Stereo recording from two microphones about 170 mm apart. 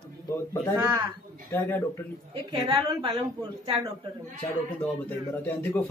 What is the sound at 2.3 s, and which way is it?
Speech, 30° right (ahead or behind).